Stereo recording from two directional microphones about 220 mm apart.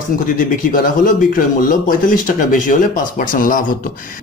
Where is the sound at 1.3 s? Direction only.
40° left (ahead or behind).